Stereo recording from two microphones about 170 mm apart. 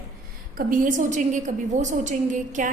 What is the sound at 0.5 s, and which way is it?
A woman's voice, 50° right (ahead or behind).